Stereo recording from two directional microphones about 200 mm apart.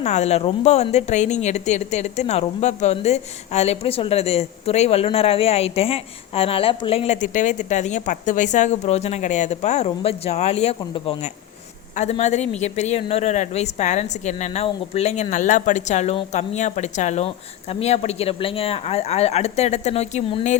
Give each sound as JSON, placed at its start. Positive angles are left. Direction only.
{"t": 0.0, "sound": "speech", "side_deg": 35}